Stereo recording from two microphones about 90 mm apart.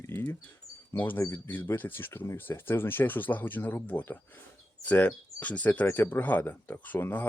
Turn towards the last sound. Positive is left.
turn(degrees=25)  # may be behind; listen again after turning